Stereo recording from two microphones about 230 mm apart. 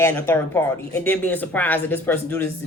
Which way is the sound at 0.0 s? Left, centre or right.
Centre.